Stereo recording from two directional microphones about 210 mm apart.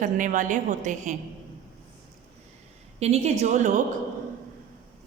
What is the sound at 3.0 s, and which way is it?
Speech, 30° right (ahead or behind).